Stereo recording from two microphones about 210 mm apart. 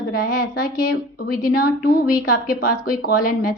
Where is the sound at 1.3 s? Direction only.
45° left (ahead or behind).